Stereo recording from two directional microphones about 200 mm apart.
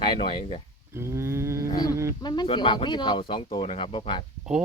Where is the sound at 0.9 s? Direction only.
15° right (ahead or behind).